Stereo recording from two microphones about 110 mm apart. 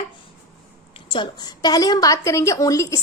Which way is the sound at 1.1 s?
45° left (ahead or behind).